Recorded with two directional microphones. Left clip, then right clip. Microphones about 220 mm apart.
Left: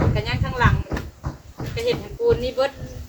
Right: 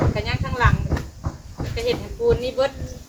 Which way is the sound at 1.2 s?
50° left (ahead or behind).